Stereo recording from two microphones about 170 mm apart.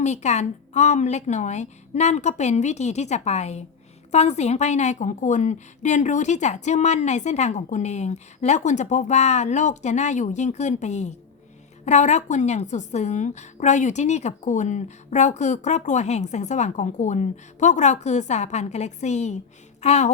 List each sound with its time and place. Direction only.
0.0 s a woman's voice: 40° left (ahead or behind)